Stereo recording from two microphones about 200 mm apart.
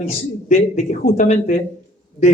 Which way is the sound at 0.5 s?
40° left (ahead or behind).